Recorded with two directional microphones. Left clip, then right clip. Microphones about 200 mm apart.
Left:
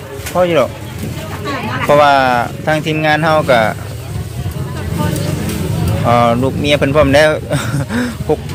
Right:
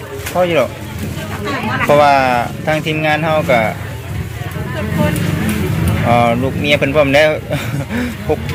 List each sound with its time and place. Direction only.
0.3 s speech: 20° left (ahead or behind)
1.9 s speech: 25° left (ahead or behind)
6.1 s speech: 25° left (ahead or behind)